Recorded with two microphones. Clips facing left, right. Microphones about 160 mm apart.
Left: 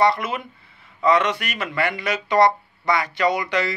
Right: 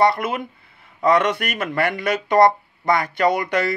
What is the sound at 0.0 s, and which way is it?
Speech, 55° right (ahead or behind).